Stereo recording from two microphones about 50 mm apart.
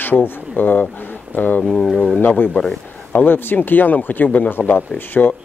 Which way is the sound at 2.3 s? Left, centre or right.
Left.